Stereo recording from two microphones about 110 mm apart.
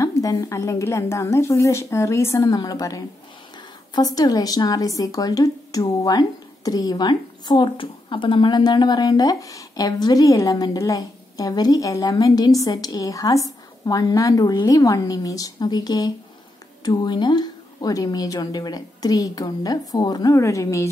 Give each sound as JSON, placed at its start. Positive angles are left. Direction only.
{"t": 0.0, "sound": "a woman's voice", "side_deg": 30}